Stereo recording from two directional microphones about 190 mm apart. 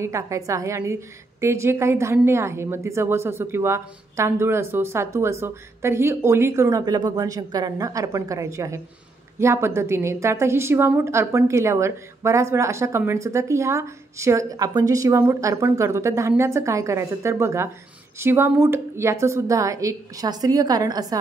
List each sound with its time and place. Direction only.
0.0 s a woman's voice: 15° right (ahead or behind)